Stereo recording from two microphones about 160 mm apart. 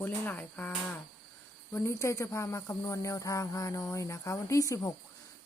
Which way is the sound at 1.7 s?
15° left (ahead or behind).